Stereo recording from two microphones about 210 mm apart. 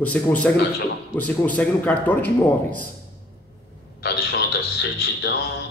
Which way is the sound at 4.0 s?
45° left (ahead or behind).